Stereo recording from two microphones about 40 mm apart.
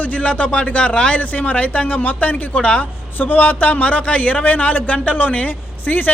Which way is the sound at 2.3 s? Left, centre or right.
Left.